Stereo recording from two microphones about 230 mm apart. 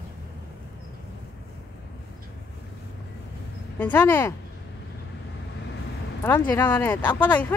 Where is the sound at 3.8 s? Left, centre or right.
Centre.